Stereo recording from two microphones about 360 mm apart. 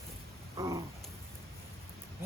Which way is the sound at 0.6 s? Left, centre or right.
Centre.